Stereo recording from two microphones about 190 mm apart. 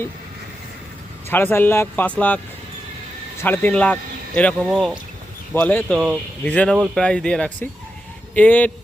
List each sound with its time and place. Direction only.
1.3 s speech: 10° left (ahead or behind)
3.4 s speech: 10° left (ahead or behind)
5.5 s speech: 10° left (ahead or behind)